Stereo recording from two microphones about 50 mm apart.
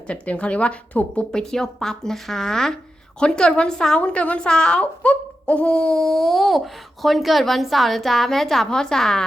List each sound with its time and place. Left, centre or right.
0.1 s a woman's voice: left
1.3 s a woman's voice: centre